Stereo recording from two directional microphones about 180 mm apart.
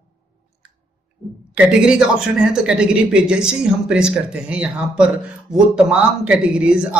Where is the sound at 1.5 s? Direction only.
5° right (ahead or behind).